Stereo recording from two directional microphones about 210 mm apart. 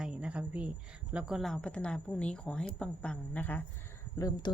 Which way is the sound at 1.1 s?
5° right (ahead or behind).